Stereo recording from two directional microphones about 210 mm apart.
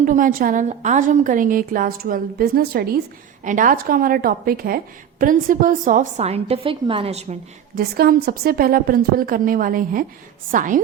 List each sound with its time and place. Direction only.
0.0 s a woman's voice: 40° right (ahead or behind)
7.8 s a woman's voice: 45° right (ahead or behind)